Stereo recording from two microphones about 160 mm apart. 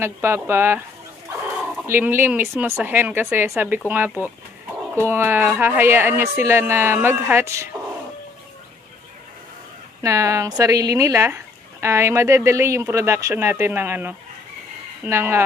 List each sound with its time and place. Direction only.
0.0 s speech: 15° right (ahead or behind)
10.0 s speech: 20° right (ahead or behind)